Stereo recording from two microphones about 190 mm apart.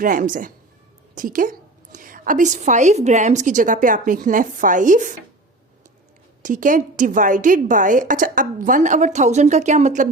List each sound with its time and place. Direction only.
0.0 s a woman's voice: 45° right (ahead or behind)
6.4 s a woman's voice: 45° right (ahead or behind)